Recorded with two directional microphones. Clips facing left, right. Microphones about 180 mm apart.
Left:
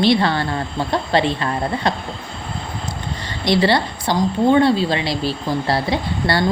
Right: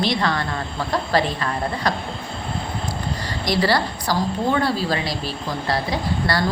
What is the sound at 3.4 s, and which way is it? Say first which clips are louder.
A woman's voice: left 4 dB; 25° left (ahead or behind).